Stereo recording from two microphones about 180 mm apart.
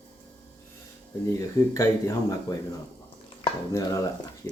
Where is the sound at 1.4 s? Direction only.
15° left (ahead or behind).